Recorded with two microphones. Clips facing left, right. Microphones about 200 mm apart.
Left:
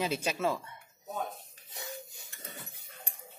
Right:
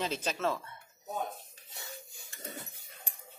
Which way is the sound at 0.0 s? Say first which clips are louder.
Left 2 dB; 10° left (ahead or behind).